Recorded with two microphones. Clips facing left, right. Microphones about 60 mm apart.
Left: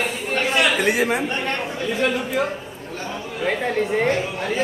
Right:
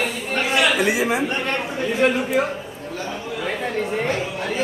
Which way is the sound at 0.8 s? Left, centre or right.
Left.